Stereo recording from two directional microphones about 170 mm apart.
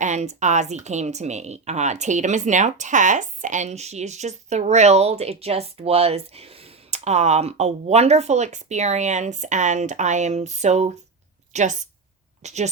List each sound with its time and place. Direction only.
0.0 s a woman's voice: 45° right (ahead or behind)